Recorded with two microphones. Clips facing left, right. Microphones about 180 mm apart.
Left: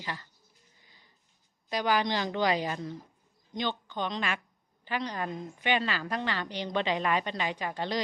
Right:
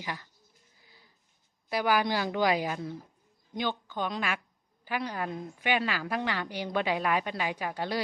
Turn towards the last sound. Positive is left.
turn(degrees=-10)  # may be behind; listen again after turning